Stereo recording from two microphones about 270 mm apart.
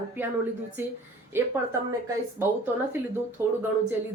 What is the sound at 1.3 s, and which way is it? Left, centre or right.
Speech, centre.